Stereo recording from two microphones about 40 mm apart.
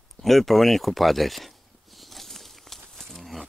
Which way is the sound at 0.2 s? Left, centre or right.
Centre.